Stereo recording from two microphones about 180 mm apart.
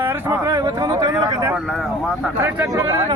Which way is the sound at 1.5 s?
Centre (ahead or behind).